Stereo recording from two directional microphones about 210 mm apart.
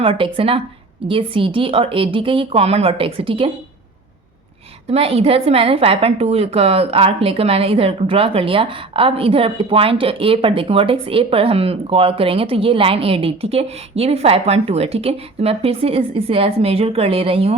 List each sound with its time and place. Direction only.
0.0 s a woman's voice: 25° right (ahead or behind)
4.9 s a woman's voice: 30° right (ahead or behind)